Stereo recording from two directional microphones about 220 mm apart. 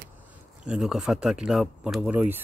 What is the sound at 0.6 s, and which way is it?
A man's voice, 5° right (ahead or behind).